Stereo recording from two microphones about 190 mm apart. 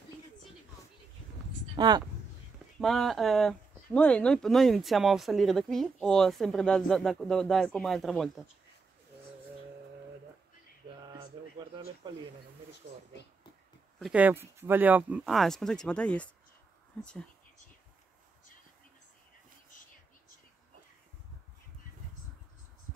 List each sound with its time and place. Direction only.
1.8 s speech: 20° right (ahead or behind)
2.8 s speech: centre (ahead or behind)
11.4 s a sound: 20° right (ahead or behind)
11.7 s speech: 25° right (ahead or behind)
13.9 s speech: 5° right (ahead or behind)